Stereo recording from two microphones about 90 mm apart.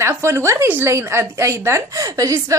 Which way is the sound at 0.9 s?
30° right (ahead or behind).